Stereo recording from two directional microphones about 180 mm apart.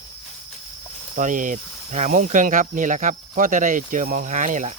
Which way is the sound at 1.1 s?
45° right (ahead or behind).